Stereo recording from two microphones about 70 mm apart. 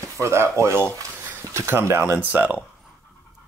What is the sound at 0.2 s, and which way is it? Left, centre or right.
Speech, right.